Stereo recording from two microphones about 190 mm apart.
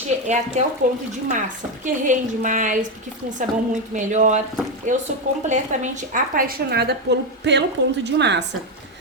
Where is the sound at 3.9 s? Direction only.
40° right (ahead or behind); by 8.4 s 65° right (ahead or behind).